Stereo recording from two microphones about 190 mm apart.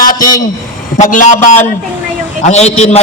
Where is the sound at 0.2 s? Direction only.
20° left (ahead or behind).